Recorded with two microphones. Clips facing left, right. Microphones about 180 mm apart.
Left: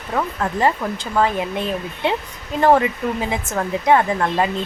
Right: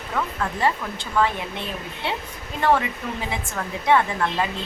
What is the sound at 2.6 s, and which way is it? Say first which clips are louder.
Speech: left 6 dB; 45° left (ahead or behind).